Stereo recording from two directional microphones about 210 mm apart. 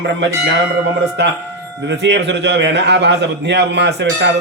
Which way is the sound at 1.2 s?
55° right (ahead or behind).